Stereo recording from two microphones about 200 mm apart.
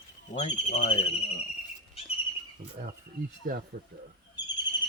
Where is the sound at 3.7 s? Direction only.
50° right (ahead or behind).